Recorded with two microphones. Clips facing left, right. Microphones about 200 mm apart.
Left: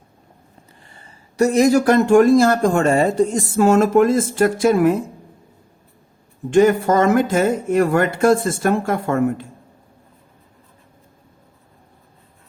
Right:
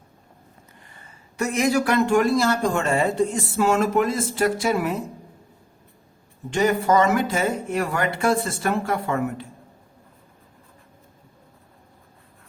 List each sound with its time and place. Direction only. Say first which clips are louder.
0.9 s speech: left 2 dB; 30° left (ahead or behind); by 4.9 s 50° left (ahead or behind)
6.5 s speech: left 6 dB; 50° left (ahead or behind)